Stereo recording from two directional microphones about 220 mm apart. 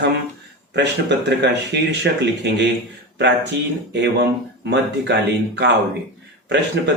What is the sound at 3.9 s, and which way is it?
Speech, 55° right (ahead or behind).